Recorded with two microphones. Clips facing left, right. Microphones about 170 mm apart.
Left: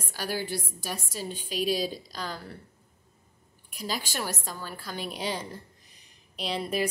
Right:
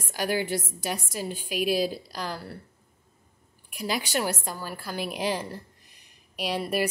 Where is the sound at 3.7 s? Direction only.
10° right (ahead or behind).